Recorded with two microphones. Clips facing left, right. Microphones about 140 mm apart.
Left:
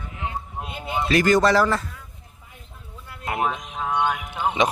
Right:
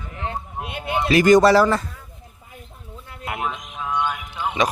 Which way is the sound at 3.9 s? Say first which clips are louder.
Left 1 dB; 60° left (ahead or behind).